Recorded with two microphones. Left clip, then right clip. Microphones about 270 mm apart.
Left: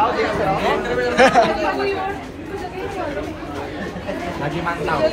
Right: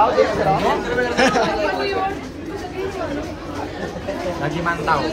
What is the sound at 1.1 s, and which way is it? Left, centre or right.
Speech, centre.